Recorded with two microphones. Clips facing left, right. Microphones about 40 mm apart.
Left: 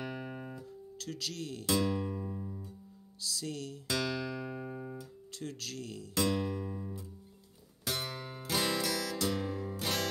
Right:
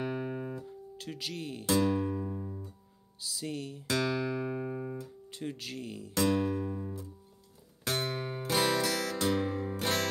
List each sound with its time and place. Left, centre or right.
0.0 s music: right
1.7 s music: right
2.3 s music: centre
4.0 s music: right
5.3 s speech: centre
6.1 s music: right
7.8 s music: right